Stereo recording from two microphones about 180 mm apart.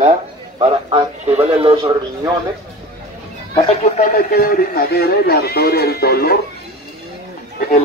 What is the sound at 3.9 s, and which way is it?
Speech, 50° left (ahead or behind).